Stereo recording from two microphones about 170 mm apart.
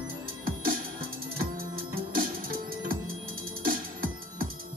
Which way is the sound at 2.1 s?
60° right (ahead or behind).